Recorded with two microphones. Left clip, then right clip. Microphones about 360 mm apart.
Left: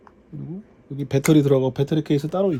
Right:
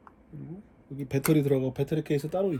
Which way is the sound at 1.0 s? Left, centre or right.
Left.